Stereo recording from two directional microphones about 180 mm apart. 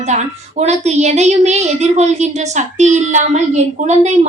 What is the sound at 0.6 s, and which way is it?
A woman's voice, 40° right (ahead or behind).